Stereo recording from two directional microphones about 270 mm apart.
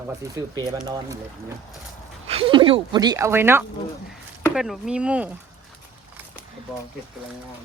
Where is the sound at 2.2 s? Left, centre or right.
Centre.